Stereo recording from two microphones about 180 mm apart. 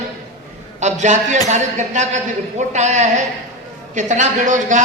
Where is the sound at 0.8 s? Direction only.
40° right (ahead or behind).